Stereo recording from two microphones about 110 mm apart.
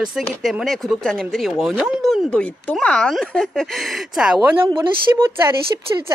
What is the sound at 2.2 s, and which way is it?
Speech, 10° left (ahead or behind).